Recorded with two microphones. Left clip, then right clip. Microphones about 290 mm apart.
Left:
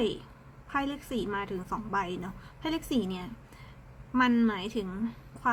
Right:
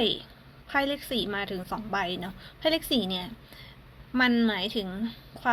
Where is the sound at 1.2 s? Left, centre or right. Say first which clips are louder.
Right 2 dB; centre.